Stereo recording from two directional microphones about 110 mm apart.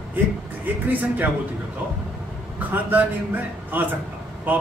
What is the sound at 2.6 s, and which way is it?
A man's voice, 15° right (ahead or behind).